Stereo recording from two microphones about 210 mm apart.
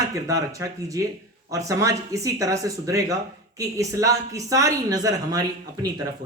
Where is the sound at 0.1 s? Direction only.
15° right (ahead or behind).